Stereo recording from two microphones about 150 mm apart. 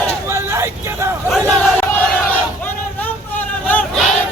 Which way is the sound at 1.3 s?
5° left (ahead or behind).